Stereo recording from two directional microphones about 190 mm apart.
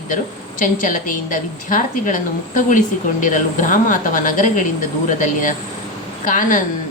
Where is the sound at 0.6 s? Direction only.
45° left (ahead or behind).